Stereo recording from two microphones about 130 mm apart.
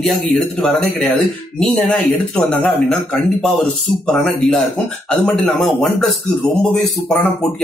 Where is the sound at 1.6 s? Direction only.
Centre (ahead or behind).